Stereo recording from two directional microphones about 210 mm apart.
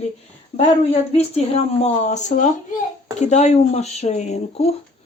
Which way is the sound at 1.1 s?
30° left (ahead or behind).